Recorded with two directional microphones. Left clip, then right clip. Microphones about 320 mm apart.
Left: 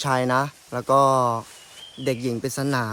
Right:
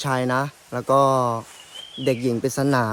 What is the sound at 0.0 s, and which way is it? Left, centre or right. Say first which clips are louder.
Speech: left 1 dB; centre.